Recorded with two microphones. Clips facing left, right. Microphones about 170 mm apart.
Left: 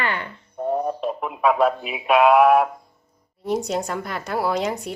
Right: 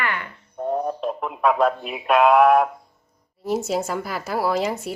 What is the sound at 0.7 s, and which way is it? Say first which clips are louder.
A woman's voice: left 1 dB; 5° left (ahead or behind).